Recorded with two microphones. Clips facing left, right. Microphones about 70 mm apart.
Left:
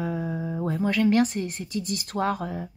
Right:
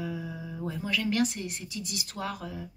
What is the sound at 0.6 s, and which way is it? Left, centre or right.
Speech, left.